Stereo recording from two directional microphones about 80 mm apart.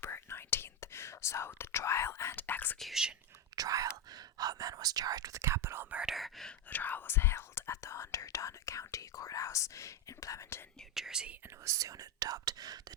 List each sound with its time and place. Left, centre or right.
0.0 s whispering: left
2.3 s speech: left
2.7 s speech: centre
3.5 s speech: right
5.4 s speech: right
5.9 s speech: centre
6.1 s speech: centre
6.7 s speech: left
10.9 s speech: centre
11.6 s speech: right